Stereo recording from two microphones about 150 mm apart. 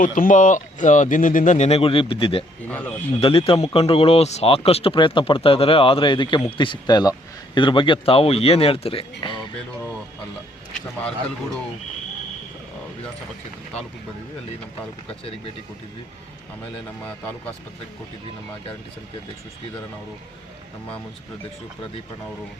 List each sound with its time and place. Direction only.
0.0 s speech: 60° left (ahead or behind); by 2.4 s 35° left (ahead or behind)
2.6 s speech: 10° left (ahead or behind)
3.2 s speech: 40° left (ahead or behind)
9.2 s music: 35° left (ahead or behind)
15.0 s speech: 40° left (ahead or behind)